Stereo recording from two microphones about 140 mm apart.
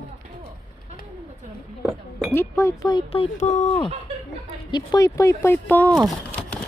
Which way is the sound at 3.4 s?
50° left (ahead or behind).